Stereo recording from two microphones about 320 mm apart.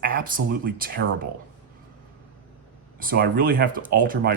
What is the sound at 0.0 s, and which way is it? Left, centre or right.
Speech, right.